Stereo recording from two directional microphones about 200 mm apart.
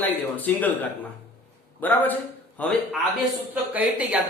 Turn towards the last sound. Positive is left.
turn(degrees=-5)  # may be behind; listen again after turning